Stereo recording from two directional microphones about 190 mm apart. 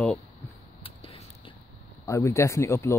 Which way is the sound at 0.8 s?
30° left (ahead or behind).